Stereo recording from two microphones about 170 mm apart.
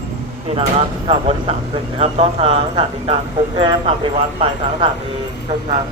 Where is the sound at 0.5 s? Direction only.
30° right (ahead or behind).